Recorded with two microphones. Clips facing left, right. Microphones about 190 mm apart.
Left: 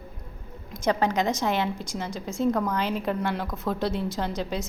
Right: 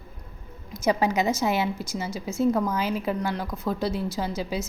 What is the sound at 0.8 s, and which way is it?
A woman's voice, 5° right (ahead or behind).